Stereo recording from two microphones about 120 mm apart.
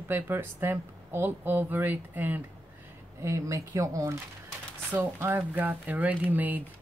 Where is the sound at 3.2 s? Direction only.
25° right (ahead or behind).